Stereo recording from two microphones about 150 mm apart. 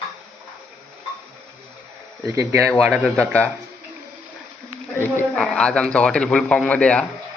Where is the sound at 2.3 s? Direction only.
20° right (ahead or behind).